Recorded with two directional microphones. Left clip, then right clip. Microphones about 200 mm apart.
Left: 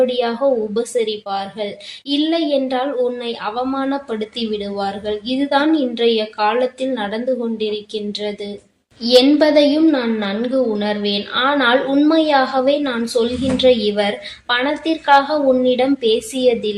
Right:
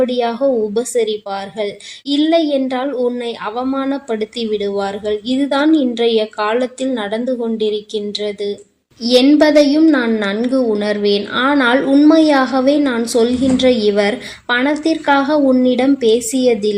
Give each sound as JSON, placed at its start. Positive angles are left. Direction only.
{"t": 0.0, "sound": "a woman's voice", "side_deg": -40}